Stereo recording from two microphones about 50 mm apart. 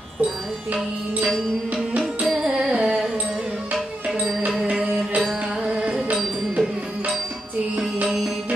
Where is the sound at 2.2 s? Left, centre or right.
Centre.